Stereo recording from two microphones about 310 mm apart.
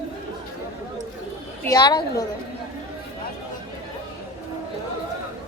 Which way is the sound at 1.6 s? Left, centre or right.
Centre.